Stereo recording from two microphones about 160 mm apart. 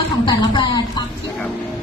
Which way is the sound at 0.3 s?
30° left (ahead or behind).